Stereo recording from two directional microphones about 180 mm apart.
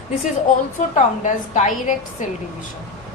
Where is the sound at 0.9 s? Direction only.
45° left (ahead or behind).